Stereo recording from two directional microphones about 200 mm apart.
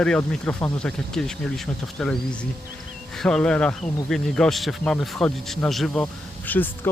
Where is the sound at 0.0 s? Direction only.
5° left (ahead or behind).